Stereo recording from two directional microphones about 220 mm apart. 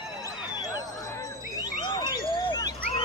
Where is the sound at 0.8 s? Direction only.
15° left (ahead or behind).